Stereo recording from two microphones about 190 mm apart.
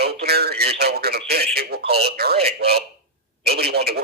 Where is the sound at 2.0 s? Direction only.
55° right (ahead or behind).